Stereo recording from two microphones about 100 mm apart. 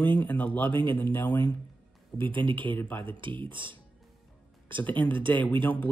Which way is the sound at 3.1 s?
55° right (ahead or behind).